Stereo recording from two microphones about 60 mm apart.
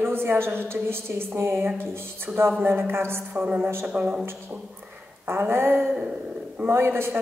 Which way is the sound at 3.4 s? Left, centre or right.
Right.